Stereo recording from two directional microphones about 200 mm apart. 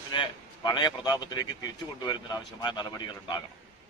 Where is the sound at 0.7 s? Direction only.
20° left (ahead or behind).